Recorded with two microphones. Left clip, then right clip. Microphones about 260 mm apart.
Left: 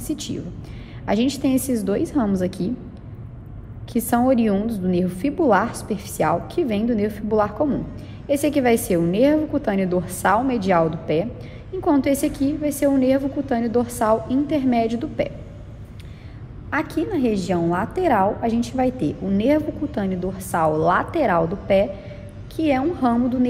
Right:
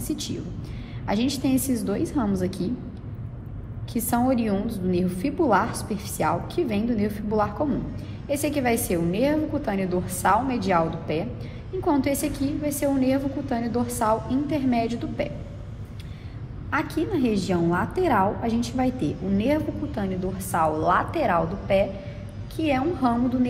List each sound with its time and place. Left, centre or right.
0.0 s a woman's voice: left
3.9 s a woman's voice: left
16.7 s a woman's voice: left